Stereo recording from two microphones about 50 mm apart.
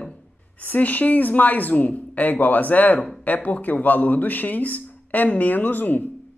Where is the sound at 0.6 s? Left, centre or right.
Left.